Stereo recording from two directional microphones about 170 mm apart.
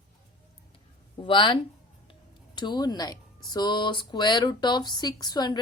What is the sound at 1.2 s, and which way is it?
Speech, 30° left (ahead or behind).